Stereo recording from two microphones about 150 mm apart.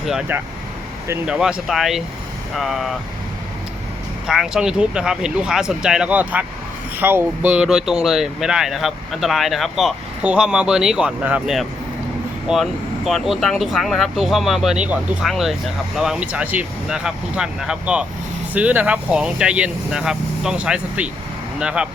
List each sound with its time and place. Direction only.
0.0 s speech: 5° right (ahead or behind)
1.0 s speech: 15° right (ahead or behind)
1.3 s speech: 5° right (ahead or behind)
4.3 s speech: 5° right (ahead or behind)